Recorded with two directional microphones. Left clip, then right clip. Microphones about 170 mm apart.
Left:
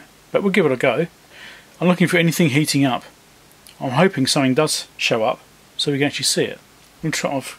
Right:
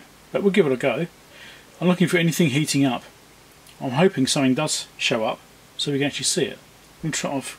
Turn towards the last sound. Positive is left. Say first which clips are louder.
# left 4 dB
turn(degrees=25)  # may be behind; listen again after turning